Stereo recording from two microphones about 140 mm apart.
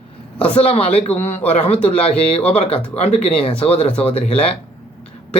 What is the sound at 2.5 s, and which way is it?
Speech, 45° left (ahead or behind).